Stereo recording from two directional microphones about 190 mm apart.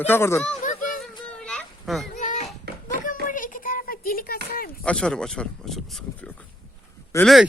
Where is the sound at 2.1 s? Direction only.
40° left (ahead or behind).